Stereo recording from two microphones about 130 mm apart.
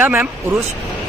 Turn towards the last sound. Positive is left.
turn(degrees=-20)  # may be behind; listen again after turning